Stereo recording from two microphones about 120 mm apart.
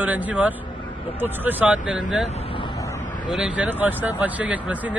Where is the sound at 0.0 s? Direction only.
15° right (ahead or behind).